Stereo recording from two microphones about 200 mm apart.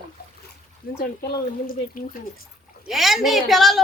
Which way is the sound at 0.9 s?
50° left (ahead or behind).